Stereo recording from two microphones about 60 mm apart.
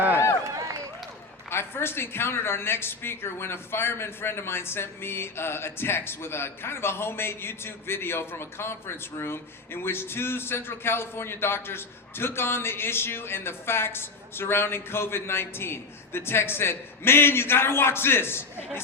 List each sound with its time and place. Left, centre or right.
1.5 s speech: left